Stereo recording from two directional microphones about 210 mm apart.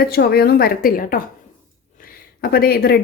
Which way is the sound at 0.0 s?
45° left (ahead or behind).